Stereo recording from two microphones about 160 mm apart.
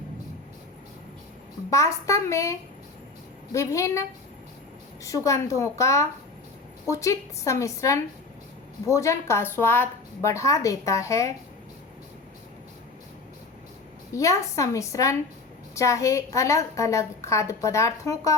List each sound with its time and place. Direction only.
1.7 s a woman's voice: 20° left (ahead or behind)
5.0 s a woman's voice: 20° left (ahead or behind)
14.1 s a woman's voice: 20° left (ahead or behind)